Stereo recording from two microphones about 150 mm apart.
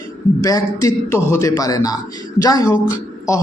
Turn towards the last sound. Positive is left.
turn(degrees=20)  # may be behind; listen again after turning